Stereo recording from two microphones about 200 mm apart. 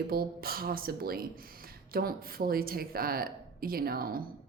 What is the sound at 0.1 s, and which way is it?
Speech, 50° right (ahead or behind).